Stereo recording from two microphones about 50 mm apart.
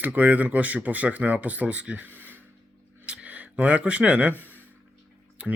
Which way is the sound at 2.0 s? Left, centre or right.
Right.